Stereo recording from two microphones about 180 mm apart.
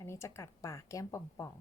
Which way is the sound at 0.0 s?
15° left (ahead or behind).